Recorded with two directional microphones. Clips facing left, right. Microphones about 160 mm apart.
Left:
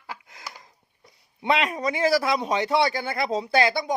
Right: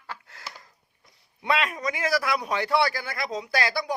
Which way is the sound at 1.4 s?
25° left (ahead or behind).